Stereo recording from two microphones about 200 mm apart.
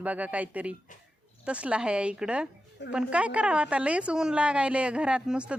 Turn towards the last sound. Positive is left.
turn(degrees=-5)  # may be behind; listen again after turning